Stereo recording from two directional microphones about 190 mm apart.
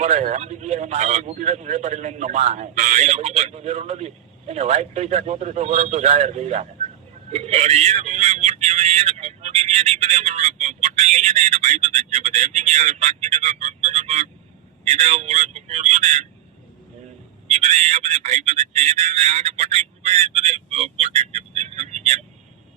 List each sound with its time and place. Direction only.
0.0 s a man's voice: 35° right (ahead or behind)
7.3 s vehicle: 35° right (ahead or behind)
14.8 s a man's voice: 35° right (ahead or behind)
17.5 s a man's voice: 35° right (ahead or behind)